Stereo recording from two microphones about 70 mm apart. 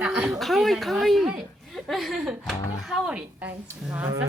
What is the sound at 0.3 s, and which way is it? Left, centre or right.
A woman's voice, centre.